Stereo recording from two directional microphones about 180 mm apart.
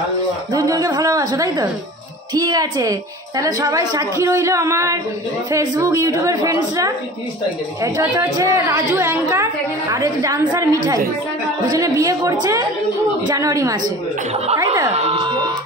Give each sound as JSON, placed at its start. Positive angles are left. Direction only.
{"t": 0.5, "sound": "a woman's voice", "side_deg": -20}
{"t": 14.3, "sound": "speech", "side_deg": -35}